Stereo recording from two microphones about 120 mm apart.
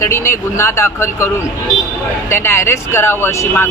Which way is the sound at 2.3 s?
20° left (ahead or behind).